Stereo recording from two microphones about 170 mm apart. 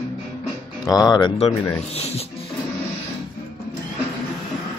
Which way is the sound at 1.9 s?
40° left (ahead or behind).